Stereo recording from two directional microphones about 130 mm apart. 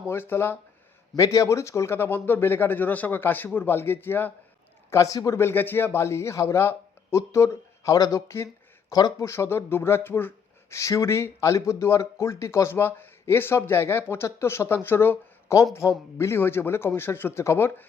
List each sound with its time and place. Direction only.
0.1 s speech: 20° left (ahead or behind)